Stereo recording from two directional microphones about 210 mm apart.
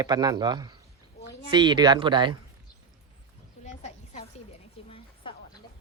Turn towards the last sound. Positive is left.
turn(degrees=25)  # may be behind; listen again after turning